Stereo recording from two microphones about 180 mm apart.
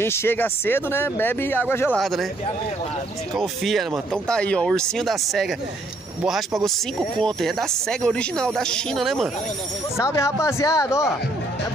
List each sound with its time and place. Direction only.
0.0 s speech: 15° left (ahead or behind)
1.9 s speech: centre (ahead or behind)
3.3 s speech: centre (ahead or behind)
6.6 s speech: 5° left (ahead or behind)
9.9 s speech: 15° left (ahead or behind)